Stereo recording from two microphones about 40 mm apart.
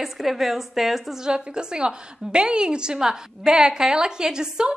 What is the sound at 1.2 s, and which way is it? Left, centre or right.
A woman's voice, right.